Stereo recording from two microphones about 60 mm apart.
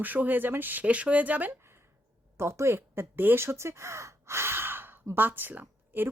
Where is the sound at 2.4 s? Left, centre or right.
Right.